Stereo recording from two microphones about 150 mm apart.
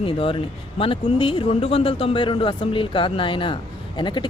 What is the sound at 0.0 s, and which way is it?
Speech, 40° left (ahead or behind).